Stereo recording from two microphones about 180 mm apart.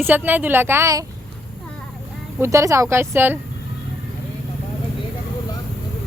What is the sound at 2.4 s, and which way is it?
Speech, 15° right (ahead or behind).